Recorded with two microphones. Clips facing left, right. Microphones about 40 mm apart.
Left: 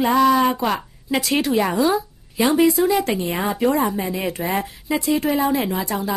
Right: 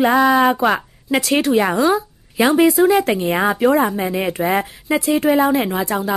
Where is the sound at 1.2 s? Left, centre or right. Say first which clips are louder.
Right 3 dB; centre.